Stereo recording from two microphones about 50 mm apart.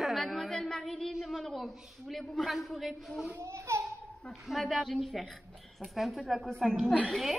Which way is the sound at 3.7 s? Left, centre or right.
Right.